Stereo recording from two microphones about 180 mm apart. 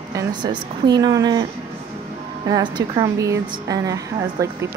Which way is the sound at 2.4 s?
25° right (ahead or behind).